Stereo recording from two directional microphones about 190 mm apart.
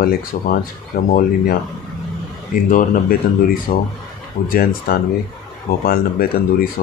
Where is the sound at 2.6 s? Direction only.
45° left (ahead or behind).